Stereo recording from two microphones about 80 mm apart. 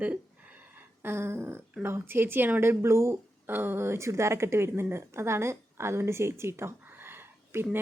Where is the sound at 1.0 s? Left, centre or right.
Right.